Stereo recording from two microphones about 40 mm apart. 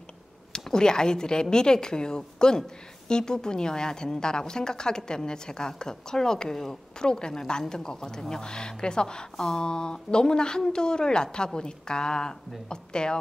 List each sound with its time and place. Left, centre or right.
0.5 s a woman's voice: centre